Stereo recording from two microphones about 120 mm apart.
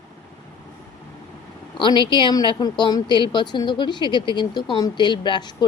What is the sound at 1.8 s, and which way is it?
A woman's voice, 40° left (ahead or behind).